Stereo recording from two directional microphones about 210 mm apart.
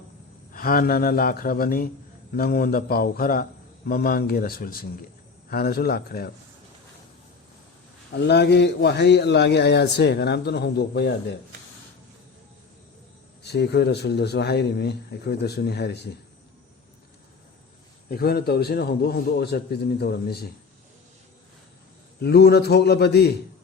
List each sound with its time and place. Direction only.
0.5 s a man's voice: 45° left (ahead or behind)
8.1 s a man's voice: 55° left (ahead or behind)
13.4 s a man's voice: 50° left (ahead or behind)
18.1 s a man's voice: 50° left (ahead or behind)
22.2 s a man's voice: 50° left (ahead or behind)